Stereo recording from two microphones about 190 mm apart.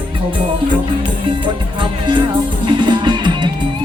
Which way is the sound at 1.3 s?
25° right (ahead or behind).